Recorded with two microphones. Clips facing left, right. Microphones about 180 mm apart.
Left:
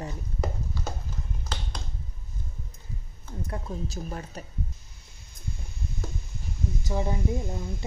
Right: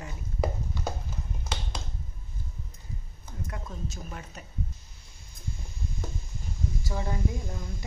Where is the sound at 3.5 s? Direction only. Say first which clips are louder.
Left 5 dB; 35° left (ahead or behind).